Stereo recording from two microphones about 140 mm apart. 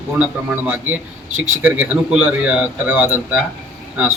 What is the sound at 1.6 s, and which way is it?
A man's voice, 10° right (ahead or behind).